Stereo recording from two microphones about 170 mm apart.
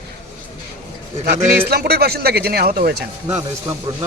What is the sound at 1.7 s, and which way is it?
Speech, 65° right (ahead or behind).